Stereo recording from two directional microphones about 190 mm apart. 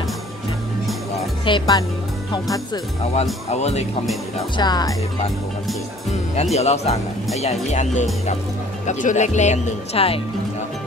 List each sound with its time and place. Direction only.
1.4 s speech: 25° left (ahead or behind)
3.5 s speech: 35° left (ahead or behind)
4.6 s speech: 20° left (ahead or behind)
6.5 s speech: 35° left (ahead or behind)